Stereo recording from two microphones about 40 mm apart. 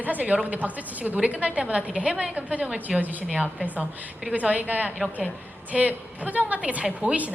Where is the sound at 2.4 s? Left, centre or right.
Right.